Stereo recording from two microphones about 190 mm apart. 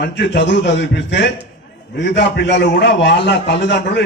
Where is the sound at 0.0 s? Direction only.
65° left (ahead or behind).